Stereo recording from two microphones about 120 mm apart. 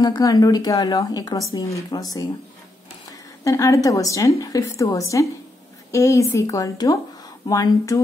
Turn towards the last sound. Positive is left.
turn(degrees=30)  # may be behind; listen again after turning